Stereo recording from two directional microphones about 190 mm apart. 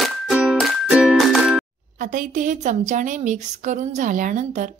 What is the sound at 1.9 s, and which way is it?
A woman's voice, 45° right (ahead or behind).